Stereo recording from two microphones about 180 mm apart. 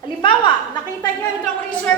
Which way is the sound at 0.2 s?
30° left (ahead or behind).